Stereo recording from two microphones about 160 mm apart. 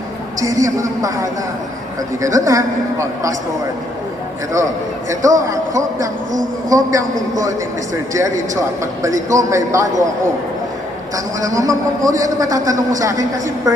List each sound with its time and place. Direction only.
0.3 s a man's voice: 20° right (ahead or behind)
4.5 s a man's voice: 20° right (ahead or behind)
8.8 s a man's voice: 20° right (ahead or behind)
11.3 s a man's voice: 20° right (ahead or behind)